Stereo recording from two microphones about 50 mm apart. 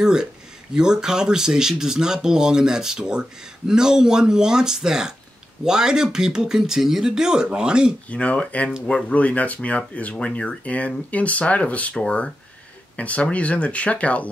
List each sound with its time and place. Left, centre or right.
0.0 s speech: centre
8.1 s speech: left